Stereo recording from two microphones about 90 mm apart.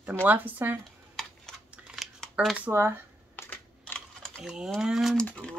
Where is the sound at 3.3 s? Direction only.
20° left (ahead or behind).